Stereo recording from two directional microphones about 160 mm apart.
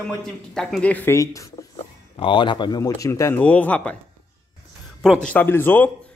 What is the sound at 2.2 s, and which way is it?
A man's voice, 30° left (ahead or behind).